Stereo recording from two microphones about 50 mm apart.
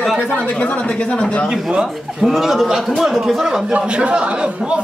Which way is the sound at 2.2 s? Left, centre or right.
Centre.